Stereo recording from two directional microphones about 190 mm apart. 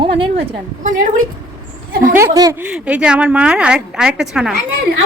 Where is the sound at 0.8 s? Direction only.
45° right (ahead or behind).